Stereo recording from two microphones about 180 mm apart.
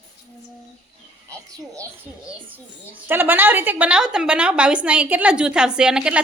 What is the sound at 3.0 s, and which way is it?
A woman's voice, 10° right (ahead or behind).